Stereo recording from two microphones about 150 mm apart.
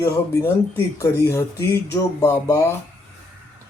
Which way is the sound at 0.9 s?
20° left (ahead or behind).